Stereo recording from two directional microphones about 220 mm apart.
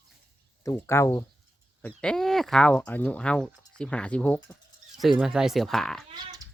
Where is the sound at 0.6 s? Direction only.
15° left (ahead or behind).